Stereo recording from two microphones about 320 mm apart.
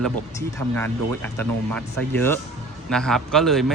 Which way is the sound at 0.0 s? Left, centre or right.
Centre.